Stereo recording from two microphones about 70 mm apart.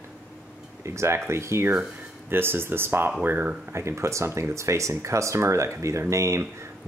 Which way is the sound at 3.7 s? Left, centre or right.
Right.